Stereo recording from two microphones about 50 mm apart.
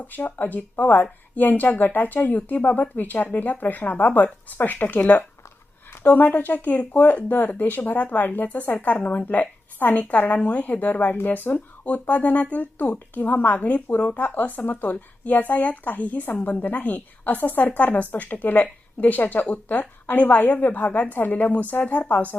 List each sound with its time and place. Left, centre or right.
0.1 s a woman's voice: left